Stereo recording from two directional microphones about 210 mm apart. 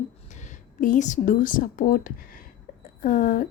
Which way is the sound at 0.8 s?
35° left (ahead or behind).